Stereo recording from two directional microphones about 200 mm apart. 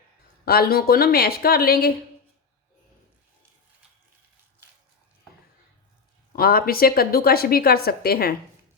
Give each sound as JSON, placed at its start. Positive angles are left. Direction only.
{"t": 0.4, "sound": "a woman's voice", "side_deg": 50}
{"t": 6.3, "sound": "a woman's voice", "side_deg": 50}